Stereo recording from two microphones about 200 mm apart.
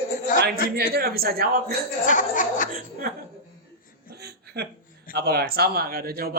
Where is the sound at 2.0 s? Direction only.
40° left (ahead or behind).